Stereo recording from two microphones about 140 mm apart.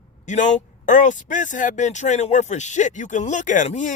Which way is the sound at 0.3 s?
60° left (ahead or behind).